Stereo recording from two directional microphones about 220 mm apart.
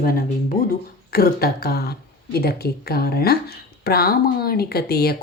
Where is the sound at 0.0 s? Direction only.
40° left (ahead or behind).